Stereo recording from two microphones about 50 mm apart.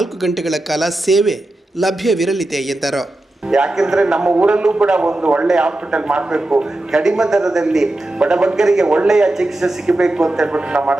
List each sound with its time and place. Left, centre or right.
0.0 s speech: centre
3.5 s a man's voice: centre
4.3 s a man's voice: right
10.5 s a man's voice: right